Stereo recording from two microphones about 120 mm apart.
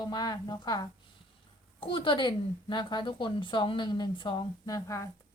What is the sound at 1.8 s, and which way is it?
A woman's voice, 45° left (ahead or behind).